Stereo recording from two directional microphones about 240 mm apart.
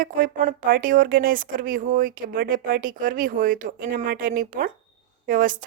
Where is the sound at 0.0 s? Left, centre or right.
Right.